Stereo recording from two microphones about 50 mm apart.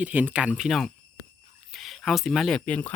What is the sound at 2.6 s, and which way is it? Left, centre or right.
Speech, left.